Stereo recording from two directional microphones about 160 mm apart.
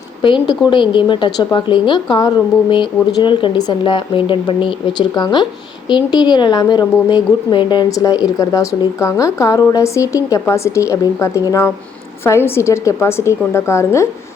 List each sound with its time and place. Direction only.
0.2 s a woman's voice: 30° left (ahead or behind)